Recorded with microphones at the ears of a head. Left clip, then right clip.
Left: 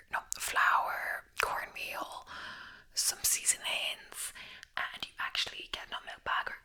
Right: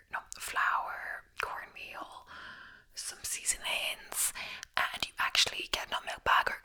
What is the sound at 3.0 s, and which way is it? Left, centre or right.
Whispering, left.